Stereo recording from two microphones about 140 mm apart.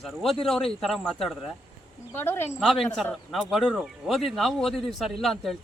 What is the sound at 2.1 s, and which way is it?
Speech, 15° left (ahead or behind).